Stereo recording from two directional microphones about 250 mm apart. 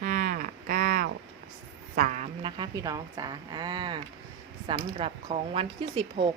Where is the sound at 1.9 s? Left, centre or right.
Right.